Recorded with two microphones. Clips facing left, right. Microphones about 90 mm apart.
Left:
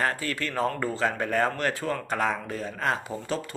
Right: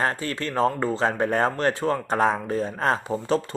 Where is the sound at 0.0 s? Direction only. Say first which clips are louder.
Right 2 dB; 30° right (ahead or behind).